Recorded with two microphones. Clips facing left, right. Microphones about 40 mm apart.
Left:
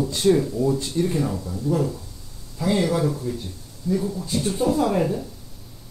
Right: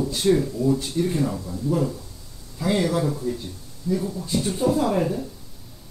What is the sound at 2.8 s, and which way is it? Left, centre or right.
A man's voice, centre.